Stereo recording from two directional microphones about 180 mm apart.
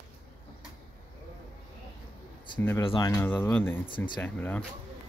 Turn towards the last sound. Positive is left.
turn(degrees=10)  # may be behind; listen again after turning